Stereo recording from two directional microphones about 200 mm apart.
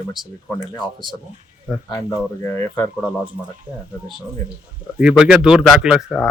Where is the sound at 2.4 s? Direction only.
15° left (ahead or behind).